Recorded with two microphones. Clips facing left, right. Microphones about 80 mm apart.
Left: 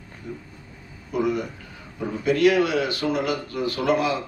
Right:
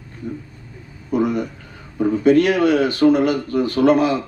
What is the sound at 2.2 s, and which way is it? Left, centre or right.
A man's voice, right.